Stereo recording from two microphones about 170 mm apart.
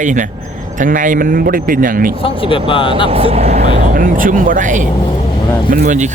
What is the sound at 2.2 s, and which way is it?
Speech, 30° left (ahead or behind).